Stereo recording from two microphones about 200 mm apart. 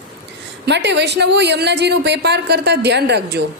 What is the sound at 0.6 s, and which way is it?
A woman's voice, 60° right (ahead or behind).